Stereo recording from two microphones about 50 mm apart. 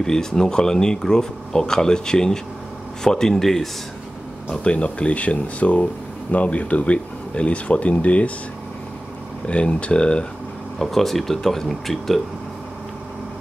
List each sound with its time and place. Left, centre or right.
0.0 s speech: centre
4.5 s speech: left
9.5 s speech: left
10.8 s speech: centre